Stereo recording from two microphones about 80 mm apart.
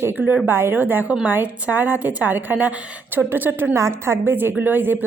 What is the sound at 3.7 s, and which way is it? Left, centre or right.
A woman's voice, right.